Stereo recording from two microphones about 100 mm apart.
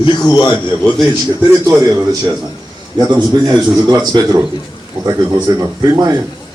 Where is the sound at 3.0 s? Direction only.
35° right (ahead or behind).